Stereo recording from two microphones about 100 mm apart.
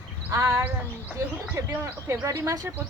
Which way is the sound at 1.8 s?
30° right (ahead or behind).